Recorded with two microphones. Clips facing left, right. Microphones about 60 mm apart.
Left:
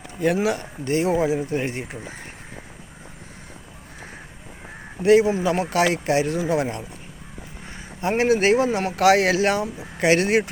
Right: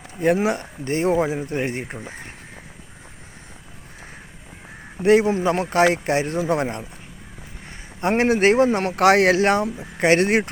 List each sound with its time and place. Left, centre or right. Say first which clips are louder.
0.2 s speech: right 2 dB; right
5.0 s speech: even; right
8.0 s speech: right 2 dB; right